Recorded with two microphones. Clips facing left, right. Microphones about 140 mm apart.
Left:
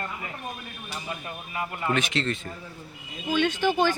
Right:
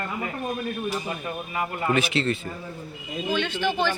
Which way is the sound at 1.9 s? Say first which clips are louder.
Right 3 dB; 5° right (ahead or behind).